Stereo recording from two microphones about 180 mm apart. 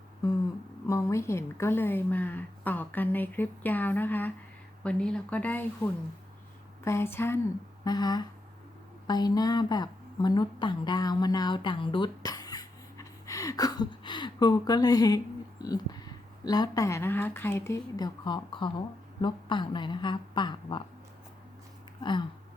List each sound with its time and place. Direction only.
0.9 s a woman's voice: 15° left (ahead or behind)
22.0 s a woman's voice: 25° left (ahead or behind)